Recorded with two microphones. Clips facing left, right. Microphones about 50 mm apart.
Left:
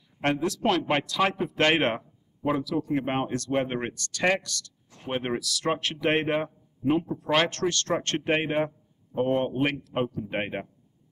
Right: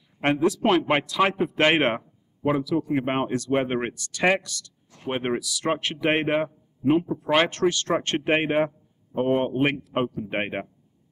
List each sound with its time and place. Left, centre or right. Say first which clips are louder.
0.2 s speech: right 4 dB; centre